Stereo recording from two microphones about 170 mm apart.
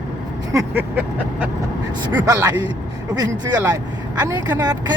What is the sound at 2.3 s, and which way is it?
Speech, 20° right (ahead or behind).